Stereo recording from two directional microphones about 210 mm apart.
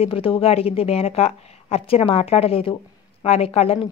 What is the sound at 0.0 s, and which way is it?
A woman's voice, 25° left (ahead or behind).